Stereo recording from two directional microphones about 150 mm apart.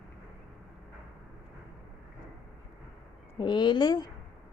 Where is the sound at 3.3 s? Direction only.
30° left (ahead or behind).